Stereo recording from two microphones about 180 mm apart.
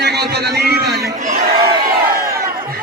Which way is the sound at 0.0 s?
65° right (ahead or behind).